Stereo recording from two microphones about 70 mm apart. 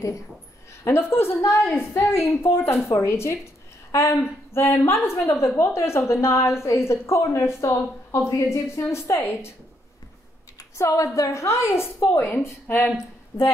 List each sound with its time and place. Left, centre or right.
0.8 s a woman's voice: left
10.6 s a sound: left
11.1 s a woman's voice: left